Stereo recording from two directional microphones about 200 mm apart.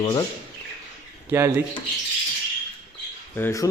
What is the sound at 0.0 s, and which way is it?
Speech, 20° left (ahead or behind).